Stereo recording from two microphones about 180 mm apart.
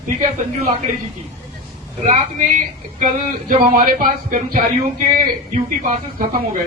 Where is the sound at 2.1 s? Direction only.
45° right (ahead or behind).